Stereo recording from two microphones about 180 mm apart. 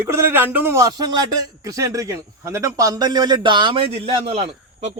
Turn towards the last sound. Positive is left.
turn(degrees=-35)  # may be behind; listen again after turning